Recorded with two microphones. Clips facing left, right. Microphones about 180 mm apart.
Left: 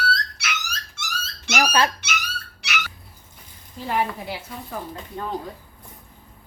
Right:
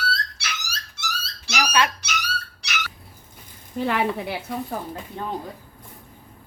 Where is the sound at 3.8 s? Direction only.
75° right (ahead or behind).